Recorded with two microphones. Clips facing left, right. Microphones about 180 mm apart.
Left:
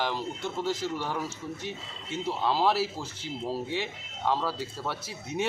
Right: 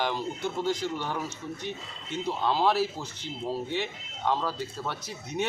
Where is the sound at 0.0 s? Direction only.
Centre (ahead or behind).